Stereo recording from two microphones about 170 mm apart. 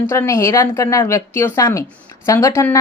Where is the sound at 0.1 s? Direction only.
15° left (ahead or behind).